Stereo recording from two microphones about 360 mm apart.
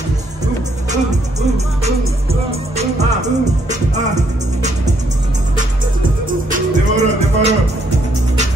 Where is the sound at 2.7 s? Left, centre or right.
Centre.